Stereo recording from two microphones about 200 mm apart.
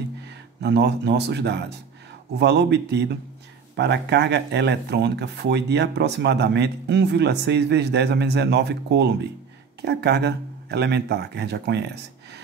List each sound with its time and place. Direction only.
0.6 s speech: 55° right (ahead or behind)